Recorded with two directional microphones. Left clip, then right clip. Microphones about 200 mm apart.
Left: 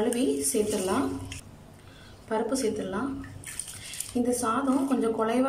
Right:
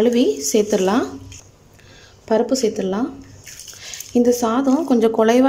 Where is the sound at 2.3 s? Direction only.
40° right (ahead or behind).